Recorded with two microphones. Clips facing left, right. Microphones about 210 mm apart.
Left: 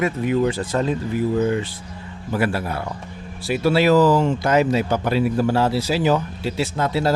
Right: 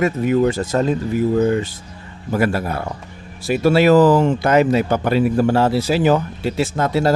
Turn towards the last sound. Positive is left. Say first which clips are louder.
# right 3 dB
turn(degrees=-50)  # may be behind; listen again after turning